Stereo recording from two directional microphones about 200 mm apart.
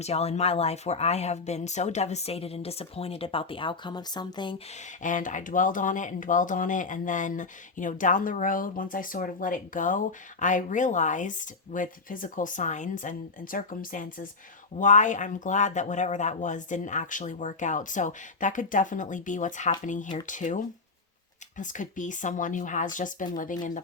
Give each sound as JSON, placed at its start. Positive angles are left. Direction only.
{"t": 0.0, "sound": "speech", "side_deg": 30}
{"t": 5.0, "sound": "speech", "side_deg": 40}